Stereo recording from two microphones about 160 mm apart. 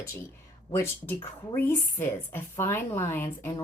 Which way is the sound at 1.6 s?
15° left (ahead or behind).